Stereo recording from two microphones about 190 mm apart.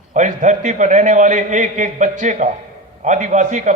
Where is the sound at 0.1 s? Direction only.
40° right (ahead or behind).